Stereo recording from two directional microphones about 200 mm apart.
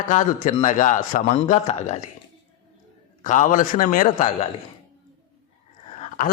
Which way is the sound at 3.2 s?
40° left (ahead or behind).